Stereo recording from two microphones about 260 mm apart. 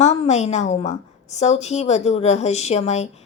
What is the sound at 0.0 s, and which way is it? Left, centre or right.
A woman's voice, left.